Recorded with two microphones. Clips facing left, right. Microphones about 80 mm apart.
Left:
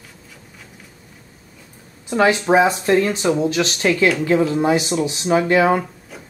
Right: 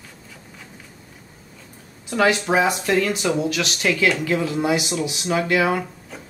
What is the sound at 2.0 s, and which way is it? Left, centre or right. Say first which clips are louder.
Speech: left 3 dB; left.